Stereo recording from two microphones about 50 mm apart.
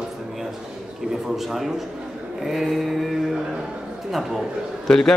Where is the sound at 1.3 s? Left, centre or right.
Centre.